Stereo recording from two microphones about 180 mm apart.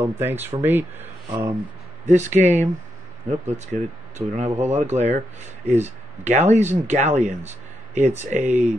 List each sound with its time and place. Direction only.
0.0 s speech: 10° right (ahead or behind)
2.0 s speech: 40° right (ahead or behind)